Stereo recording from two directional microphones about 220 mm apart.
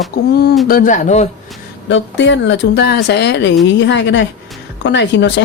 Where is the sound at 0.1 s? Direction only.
45° left (ahead or behind).